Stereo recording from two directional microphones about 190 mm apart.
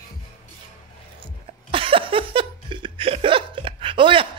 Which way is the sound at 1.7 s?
30° right (ahead or behind).